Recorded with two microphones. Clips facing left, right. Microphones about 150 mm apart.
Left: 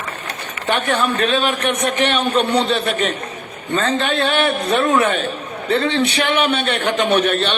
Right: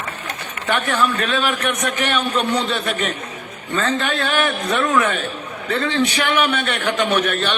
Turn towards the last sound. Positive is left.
turn(degrees=30)  # may be behind; listen again after turning